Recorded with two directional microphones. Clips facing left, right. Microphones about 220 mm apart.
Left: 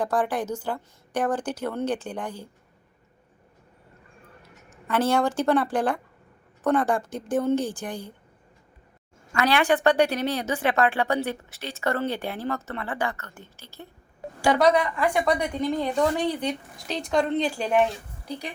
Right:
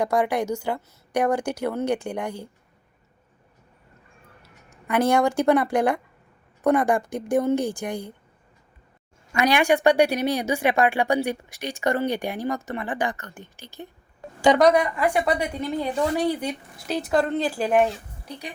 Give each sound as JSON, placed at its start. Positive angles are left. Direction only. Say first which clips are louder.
{"t": 0.0, "sound": "a woman's voice", "louder": "right 3 dB", "side_deg": -10}
{"t": 4.9, "sound": "a woman's voice", "louder": "right 3 dB", "side_deg": -15}
{"t": 9.3, "sound": "a woman's voice", "louder": "right 2 dB", "side_deg": -15}
{"t": 14.9, "sound": "a woman's voice", "louder": "right 1 dB", "side_deg": -10}